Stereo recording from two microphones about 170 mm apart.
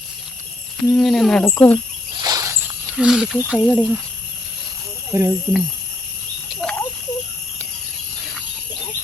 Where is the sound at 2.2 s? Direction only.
20° right (ahead or behind).